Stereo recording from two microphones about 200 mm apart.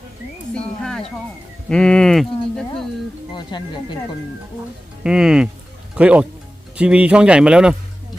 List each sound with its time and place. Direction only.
0.5 s speech: 5° left (ahead or behind)
3.3 s speech: 20° left (ahead or behind)
5.0 s speech: 5° right (ahead or behind)